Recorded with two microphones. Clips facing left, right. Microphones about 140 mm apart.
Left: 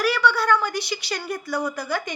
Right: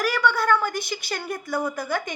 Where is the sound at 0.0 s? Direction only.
45° right (ahead or behind).